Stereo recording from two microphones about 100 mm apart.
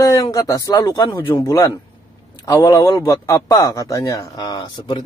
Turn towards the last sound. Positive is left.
turn(degrees=50)  # may be behind; listen again after turning